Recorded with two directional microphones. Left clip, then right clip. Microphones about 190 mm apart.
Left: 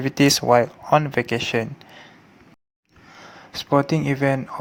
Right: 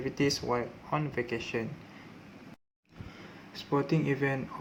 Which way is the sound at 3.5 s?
50° left (ahead or behind).